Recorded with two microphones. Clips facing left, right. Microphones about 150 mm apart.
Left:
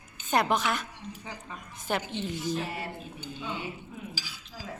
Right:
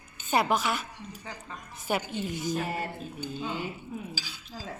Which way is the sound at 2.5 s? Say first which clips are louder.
Right 2 dB; 45° right (ahead or behind).